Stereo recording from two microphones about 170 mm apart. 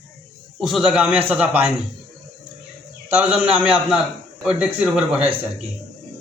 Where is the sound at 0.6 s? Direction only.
Centre (ahead or behind).